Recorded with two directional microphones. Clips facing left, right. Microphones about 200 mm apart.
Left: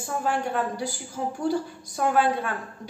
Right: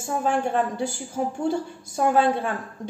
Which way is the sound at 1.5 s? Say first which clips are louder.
Right 1 dB; 25° right (ahead or behind).